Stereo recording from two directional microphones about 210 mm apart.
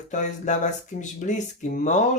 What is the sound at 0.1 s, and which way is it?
Speech, 35° left (ahead or behind).